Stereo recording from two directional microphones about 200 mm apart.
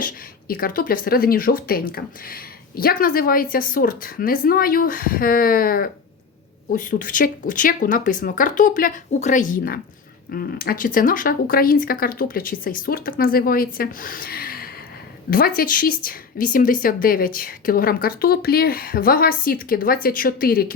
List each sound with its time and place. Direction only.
0.0 s speech: 50° left (ahead or behind)